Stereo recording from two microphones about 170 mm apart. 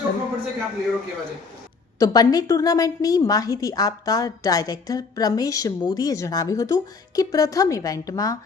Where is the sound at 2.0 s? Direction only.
20° left (ahead or behind).